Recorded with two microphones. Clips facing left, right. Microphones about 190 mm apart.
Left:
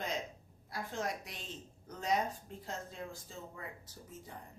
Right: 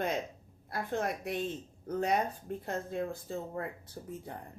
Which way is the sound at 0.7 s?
60° right (ahead or behind).